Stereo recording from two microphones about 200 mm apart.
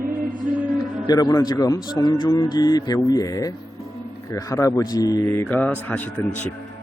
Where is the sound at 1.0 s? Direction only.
20° left (ahead or behind).